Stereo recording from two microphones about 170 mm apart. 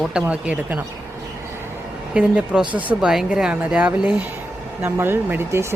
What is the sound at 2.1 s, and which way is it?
Speech, 5° right (ahead or behind).